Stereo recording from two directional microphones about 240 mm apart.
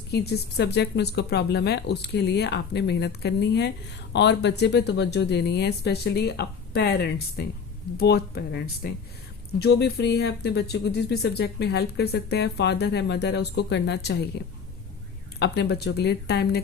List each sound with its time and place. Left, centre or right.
0.1 s speech: left
15.4 s speech: left